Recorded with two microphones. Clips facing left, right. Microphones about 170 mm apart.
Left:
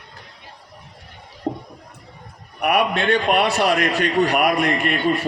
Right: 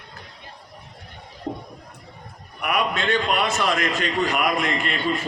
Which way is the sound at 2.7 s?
60° left (ahead or behind).